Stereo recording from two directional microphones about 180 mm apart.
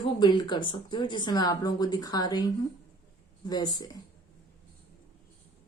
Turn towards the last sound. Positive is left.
turn(degrees=20)  # may be behind; listen again after turning